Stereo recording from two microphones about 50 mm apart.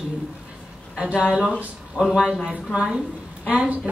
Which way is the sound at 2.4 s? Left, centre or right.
Centre.